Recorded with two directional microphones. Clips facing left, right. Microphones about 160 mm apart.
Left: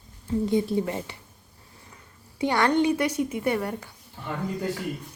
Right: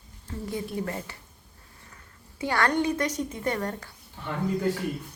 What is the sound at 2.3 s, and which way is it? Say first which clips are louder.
A woman's voice: left 3 dB; 15° left (ahead or behind).